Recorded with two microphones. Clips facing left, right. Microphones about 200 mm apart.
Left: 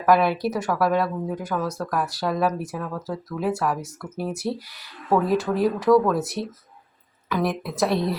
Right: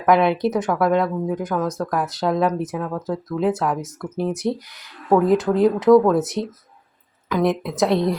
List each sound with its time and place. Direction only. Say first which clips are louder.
0.0 s speech: right 3 dB; 20° right (ahead or behind)